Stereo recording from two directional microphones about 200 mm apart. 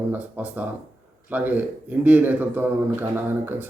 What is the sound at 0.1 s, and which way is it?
A man's voice, 10° right (ahead or behind).